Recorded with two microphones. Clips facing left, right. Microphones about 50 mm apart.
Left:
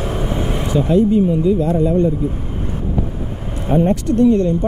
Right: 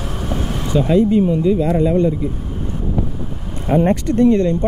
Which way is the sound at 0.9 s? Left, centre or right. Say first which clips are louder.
Even; right.